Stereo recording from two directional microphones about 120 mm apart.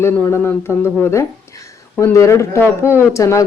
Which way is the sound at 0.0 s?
20° left (ahead or behind).